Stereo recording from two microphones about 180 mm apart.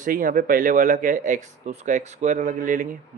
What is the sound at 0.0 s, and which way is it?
Speech, 50° right (ahead or behind).